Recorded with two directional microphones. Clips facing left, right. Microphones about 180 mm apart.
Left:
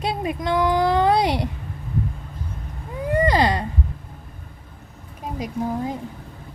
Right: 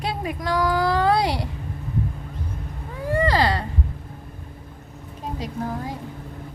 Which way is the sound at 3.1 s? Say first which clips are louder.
Left 2 dB; 20° left (ahead or behind).